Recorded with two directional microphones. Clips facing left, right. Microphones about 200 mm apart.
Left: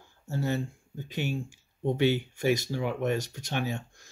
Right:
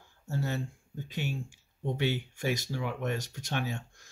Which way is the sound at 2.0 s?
15° left (ahead or behind).